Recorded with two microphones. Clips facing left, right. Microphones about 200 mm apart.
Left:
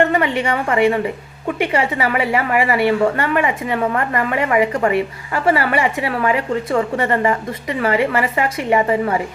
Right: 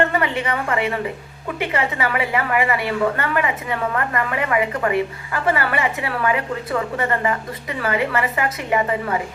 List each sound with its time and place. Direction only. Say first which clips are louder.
0.1 s a woman's voice: left 4 dB; 25° left (ahead or behind)